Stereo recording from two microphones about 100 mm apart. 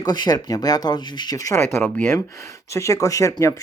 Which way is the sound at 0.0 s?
45° left (ahead or behind).